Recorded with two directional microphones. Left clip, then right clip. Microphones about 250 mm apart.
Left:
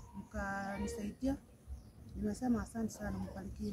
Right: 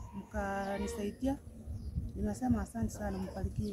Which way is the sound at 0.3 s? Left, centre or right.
Centre.